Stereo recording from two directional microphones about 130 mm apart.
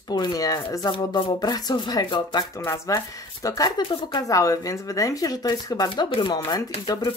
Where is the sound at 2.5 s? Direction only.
20° left (ahead or behind).